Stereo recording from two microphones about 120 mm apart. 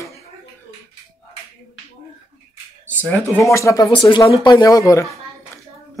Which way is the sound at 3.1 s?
20° left (ahead or behind).